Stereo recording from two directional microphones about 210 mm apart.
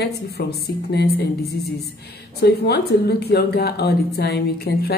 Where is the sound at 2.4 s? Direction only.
50° left (ahead or behind).